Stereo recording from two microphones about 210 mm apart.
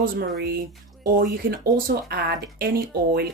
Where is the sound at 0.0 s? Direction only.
45° right (ahead or behind).